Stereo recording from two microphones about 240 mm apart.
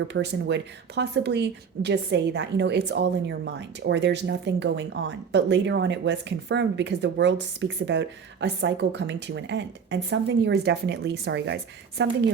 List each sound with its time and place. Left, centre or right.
0.1 s speech: right